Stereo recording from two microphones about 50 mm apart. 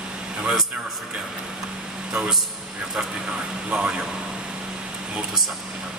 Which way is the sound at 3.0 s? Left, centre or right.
Centre.